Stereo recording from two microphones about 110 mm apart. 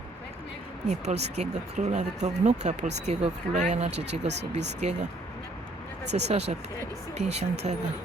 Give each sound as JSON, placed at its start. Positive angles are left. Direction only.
{"t": 0.9, "sound": "speech", "side_deg": -90}
{"t": 6.1, "sound": "speech", "side_deg": -90}